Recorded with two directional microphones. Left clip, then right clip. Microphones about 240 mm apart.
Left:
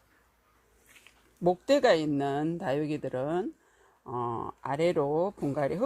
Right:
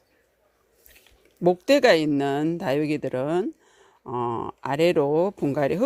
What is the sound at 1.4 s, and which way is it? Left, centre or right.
Speech, right.